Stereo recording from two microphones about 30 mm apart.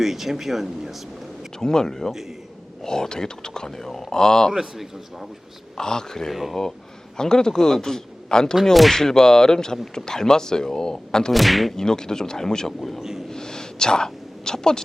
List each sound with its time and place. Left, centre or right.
0.0 s speech: centre
1.5 s speech: centre
5.7 s a man's voice: left
8.7 s speech: centre
9.0 s speech: centre
11.3 s speech: centre
11.8 s speech: left
13.0 s snort: centre
13.3 s a sound: left